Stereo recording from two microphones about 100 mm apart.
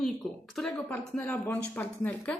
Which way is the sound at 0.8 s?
20° left (ahead or behind).